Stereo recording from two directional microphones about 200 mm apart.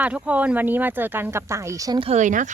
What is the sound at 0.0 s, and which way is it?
Speech, 5° right (ahead or behind).